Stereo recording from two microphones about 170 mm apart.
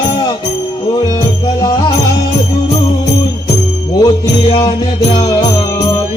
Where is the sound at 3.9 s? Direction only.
25° left (ahead or behind).